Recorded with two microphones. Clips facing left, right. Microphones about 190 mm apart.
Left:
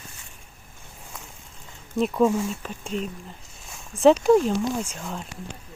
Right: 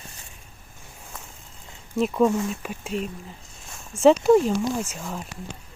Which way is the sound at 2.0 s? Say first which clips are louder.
Even; centre (ahead or behind).